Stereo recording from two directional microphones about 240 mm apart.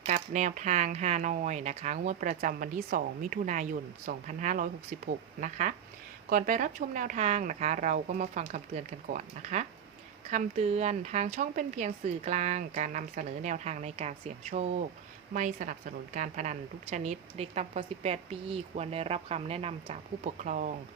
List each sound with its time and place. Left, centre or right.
0.0 s a woman's voice: right